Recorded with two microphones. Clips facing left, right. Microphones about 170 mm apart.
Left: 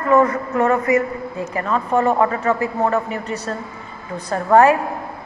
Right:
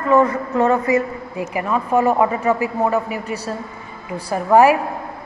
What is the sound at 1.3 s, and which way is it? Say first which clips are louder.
A man's voice: right 2 dB; 15° right (ahead or behind).